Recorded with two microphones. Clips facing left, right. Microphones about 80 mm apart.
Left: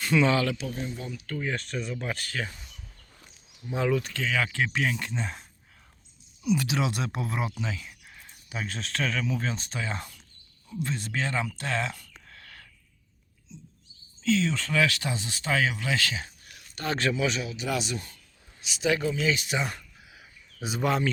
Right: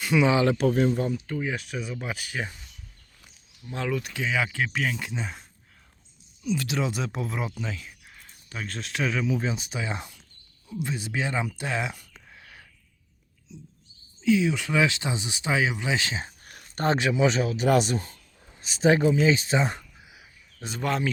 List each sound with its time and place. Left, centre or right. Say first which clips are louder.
0.0 s speech: right 2 dB; centre
0.7 s speech: right 12 dB; right
1.3 s speech: right 1 dB; centre
3.7 s speech: left 3 dB; centre
4.1 s speech: right 1 dB; centre
6.4 s speech: left 1 dB; centre
12.3 s a sound: even; centre
14.2 s speech: right 3 dB; centre
16.4 s a sound: right 7 dB; right
17.0 s speech: right 3 dB; centre
17.2 s speech: right 6 dB; right
17.5 s speech: right 8 dB; right
17.9 s speech: right 5 dB; right
20.6 s speech: left 1 dB; centre